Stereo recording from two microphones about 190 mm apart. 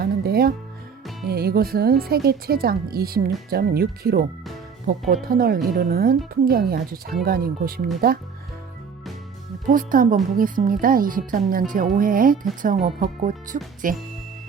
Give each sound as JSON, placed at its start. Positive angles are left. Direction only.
{"t": 0.0, "sound": "music", "side_deg": -55}
{"t": 1.3, "sound": "speech", "side_deg": -55}
{"t": 9.6, "sound": "speech", "side_deg": -45}